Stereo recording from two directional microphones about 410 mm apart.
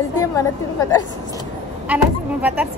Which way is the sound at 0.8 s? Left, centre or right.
Centre.